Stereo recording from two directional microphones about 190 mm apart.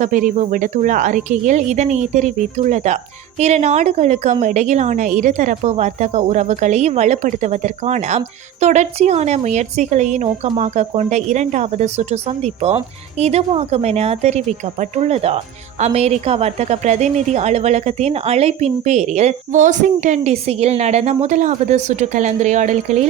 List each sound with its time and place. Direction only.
0.0 s a woman's voice: 45° right (ahead or behind)